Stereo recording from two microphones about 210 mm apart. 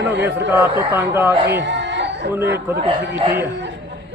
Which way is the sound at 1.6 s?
55° right (ahead or behind).